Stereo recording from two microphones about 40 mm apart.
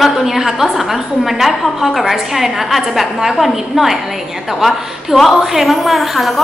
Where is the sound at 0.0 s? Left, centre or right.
Centre.